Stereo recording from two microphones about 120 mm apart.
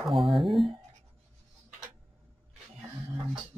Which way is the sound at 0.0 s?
Centre (ahead or behind).